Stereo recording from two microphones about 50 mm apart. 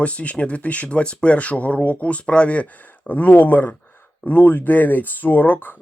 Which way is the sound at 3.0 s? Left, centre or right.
Left.